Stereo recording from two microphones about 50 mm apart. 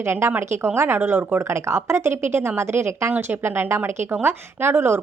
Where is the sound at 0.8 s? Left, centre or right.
Right.